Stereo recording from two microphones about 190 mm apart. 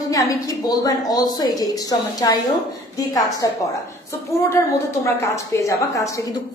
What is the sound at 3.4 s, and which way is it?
Speech, 15° left (ahead or behind).